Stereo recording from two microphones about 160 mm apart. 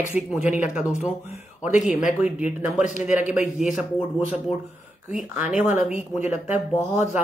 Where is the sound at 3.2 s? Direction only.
5° right (ahead or behind).